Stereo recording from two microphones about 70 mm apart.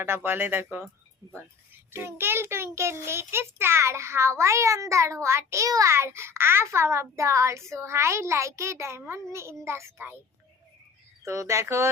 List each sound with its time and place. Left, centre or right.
0.0 s a child's voice: right
1.9 s a child's voice: right
5.6 s a child's voice: right
5.9 s a child's voice: right
11.2 s a child's voice: right